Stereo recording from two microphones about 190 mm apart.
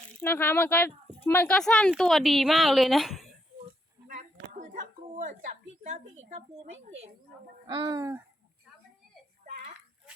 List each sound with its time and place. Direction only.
0.2 s speech: 10° left (ahead or behind)
4.1 s a woman's voice: 40° right (ahead or behind)
7.7 s speech: 25° right (ahead or behind)